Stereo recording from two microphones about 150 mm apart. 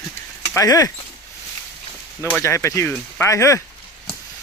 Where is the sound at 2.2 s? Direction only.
20° left (ahead or behind).